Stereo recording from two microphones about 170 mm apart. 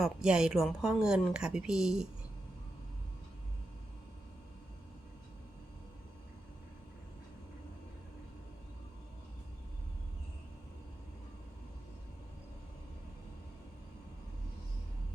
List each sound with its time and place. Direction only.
0.0 s speech: 5° right (ahead or behind)